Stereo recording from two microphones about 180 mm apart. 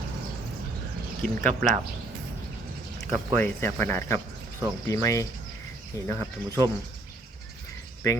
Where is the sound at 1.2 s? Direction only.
5° left (ahead or behind).